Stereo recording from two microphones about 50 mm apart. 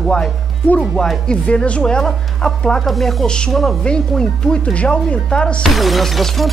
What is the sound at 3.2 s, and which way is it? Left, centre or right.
Speech, centre.